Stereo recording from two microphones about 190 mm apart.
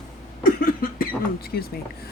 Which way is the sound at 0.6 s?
50° left (ahead or behind).